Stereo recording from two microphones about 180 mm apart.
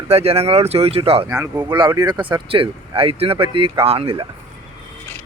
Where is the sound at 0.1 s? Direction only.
35° right (ahead or behind).